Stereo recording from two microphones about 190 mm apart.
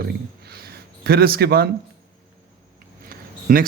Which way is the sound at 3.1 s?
50° right (ahead or behind).